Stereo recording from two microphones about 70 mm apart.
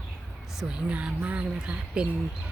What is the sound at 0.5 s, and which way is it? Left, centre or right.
Speech, centre.